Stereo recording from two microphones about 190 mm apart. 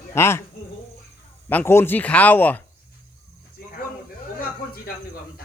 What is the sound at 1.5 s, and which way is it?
Speech, 15° left (ahead or behind).